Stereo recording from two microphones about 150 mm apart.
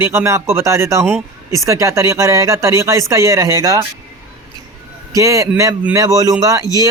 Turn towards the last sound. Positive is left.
turn(degrees=-25)  # may be behind; listen again after turning